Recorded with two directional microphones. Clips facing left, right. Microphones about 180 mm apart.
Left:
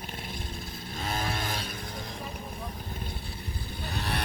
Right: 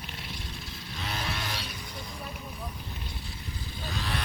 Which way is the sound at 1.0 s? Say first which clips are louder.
Left 3 dB; 50° left (ahead or behind).